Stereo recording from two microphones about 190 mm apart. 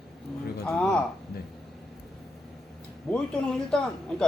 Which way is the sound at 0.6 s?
5° left (ahead or behind).